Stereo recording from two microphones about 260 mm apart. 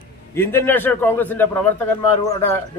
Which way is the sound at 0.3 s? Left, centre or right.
Centre.